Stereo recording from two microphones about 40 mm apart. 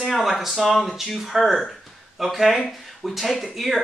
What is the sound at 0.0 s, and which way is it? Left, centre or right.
Speech, centre.